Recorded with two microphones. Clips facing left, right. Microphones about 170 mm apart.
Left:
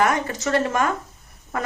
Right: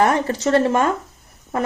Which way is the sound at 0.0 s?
30° right (ahead or behind).